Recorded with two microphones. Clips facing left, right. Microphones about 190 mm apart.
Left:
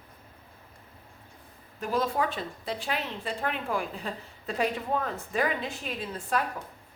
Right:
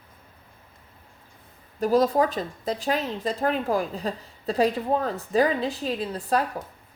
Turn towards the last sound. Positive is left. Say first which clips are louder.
# right 5 dB
turn(degrees=-35)  # may be behind; listen again after turning